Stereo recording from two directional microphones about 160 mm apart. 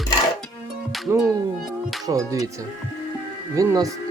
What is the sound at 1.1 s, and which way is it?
Speech, 15° right (ahead or behind).